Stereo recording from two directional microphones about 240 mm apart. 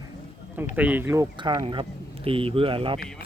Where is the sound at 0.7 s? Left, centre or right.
Centre.